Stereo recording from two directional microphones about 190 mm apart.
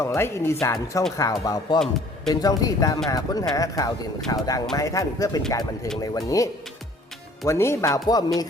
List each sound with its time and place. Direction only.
0.0 s speech: 15° left (ahead or behind)
1.8 s a man's voice: centre (ahead or behind)
2.3 s speech: 20° left (ahead or behind)